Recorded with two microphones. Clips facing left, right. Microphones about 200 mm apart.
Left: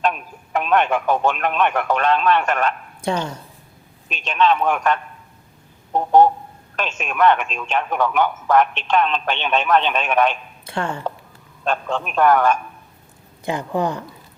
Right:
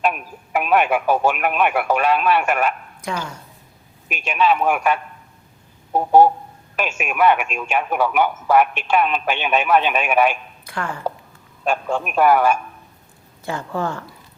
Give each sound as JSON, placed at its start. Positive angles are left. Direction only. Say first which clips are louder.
{"t": 0.0, "sound": "speech", "louder": "even", "side_deg": -10}
{"t": 3.0, "sound": "speech", "louder": "left 6 dB", "side_deg": 30}
{"t": 4.1, "sound": "speech", "louder": "even", "side_deg": -10}
{"t": 10.7, "sound": "speech", "louder": "left 3 dB", "side_deg": 25}
{"t": 11.6, "sound": "speech", "louder": "right 1 dB", "side_deg": -10}
{"t": 13.4, "sound": "speech", "louder": "left 3 dB", "side_deg": 15}